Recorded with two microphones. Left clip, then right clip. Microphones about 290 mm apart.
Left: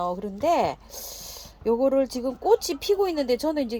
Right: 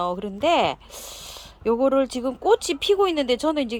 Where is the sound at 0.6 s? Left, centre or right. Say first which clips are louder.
Right 3 dB; centre.